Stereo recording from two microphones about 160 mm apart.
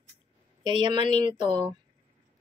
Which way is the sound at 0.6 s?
30° right (ahead or behind).